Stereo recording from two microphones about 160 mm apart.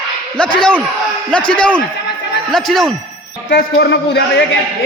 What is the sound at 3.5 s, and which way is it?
Speech, 90° left.